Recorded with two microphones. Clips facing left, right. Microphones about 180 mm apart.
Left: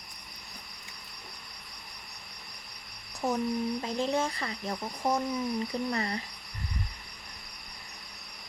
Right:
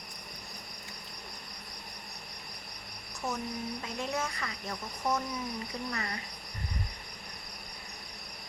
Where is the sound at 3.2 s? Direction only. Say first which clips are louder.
Left 7 dB; 35° left (ahead or behind).